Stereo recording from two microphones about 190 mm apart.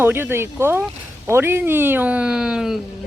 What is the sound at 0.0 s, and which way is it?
Speech, 10° right (ahead or behind).